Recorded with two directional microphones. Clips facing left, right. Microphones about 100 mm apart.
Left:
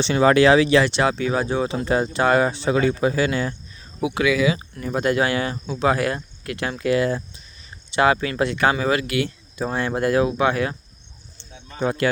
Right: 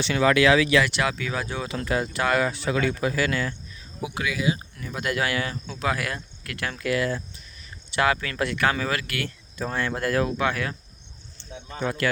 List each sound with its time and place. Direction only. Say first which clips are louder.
0.0 s speech: left 4 dB; 30° left (ahead or behind)
4.0 s speech: left 9 dB; 90° left
4.7 s speech: left 7 dB; 40° left (ahead or behind); by 10.8 s 25° left (ahead or behind)
11.3 s a sound: left 4 dB; 25° left (ahead or behind)